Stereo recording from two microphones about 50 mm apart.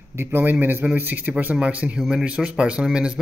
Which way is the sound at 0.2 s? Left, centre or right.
Right.